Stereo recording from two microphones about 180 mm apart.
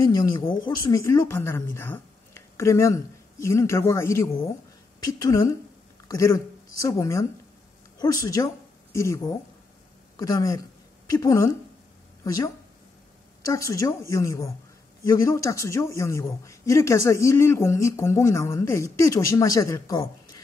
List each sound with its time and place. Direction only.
0.2 s a man's voice: 25° left (ahead or behind)
13.4 s a man's voice: 15° left (ahead or behind)